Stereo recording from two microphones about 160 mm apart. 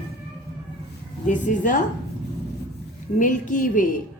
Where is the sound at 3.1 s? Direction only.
55° left (ahead or behind).